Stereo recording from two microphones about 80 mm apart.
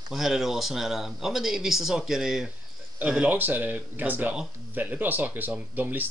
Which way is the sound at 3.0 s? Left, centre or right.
Centre.